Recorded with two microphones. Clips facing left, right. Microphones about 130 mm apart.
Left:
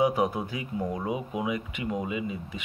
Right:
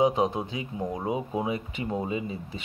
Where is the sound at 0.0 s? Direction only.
25° right (ahead or behind).